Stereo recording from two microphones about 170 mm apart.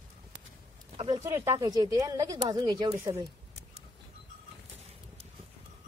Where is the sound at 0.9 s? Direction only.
25° right (ahead or behind).